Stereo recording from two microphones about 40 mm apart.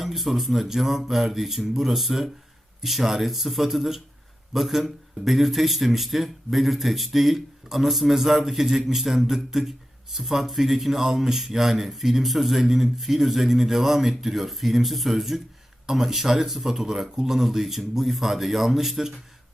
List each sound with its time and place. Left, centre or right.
0.0 s speech: centre